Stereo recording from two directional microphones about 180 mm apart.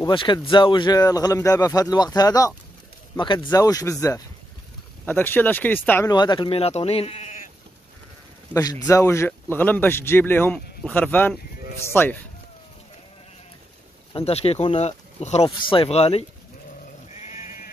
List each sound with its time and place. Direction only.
0.0 s speech: 25° left (ahead or behind); by 6.1 s 10° left (ahead or behind)
6.1 s speech: 25° left (ahead or behind); by 7.4 s 40° left (ahead or behind)
8.5 s speech: 20° left (ahead or behind)
14.1 s speech: 35° left (ahead or behind)
17.1 s sheep: 40° left (ahead or behind)